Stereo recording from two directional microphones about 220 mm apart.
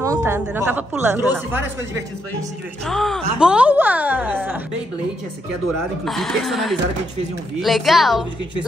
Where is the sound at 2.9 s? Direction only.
Centre (ahead or behind).